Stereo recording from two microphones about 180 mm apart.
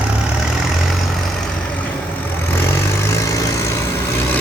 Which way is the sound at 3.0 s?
15° left (ahead or behind).